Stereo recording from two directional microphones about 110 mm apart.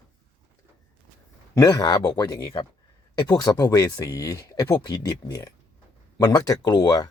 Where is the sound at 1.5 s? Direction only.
35° left (ahead or behind).